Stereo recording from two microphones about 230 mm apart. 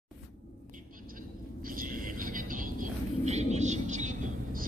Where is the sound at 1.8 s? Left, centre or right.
Right.